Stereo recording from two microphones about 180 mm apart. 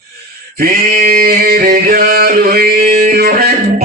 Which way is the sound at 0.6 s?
55° right (ahead or behind).